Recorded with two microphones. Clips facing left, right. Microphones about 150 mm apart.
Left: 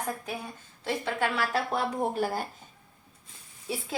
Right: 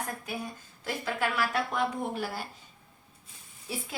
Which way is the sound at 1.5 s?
35° left (ahead or behind).